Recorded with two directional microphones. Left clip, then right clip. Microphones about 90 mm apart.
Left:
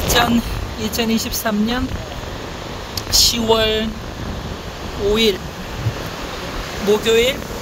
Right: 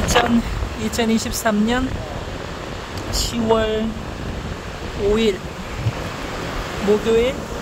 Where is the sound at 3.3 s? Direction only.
45° left (ahead or behind).